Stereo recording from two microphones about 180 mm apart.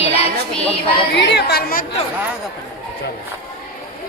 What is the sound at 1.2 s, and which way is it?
Speech, 70° left (ahead or behind).